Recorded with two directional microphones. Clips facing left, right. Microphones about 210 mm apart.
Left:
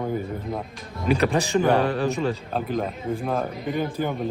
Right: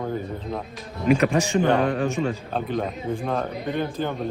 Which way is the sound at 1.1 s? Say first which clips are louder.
Right 1 dB; 35° left (ahead or behind).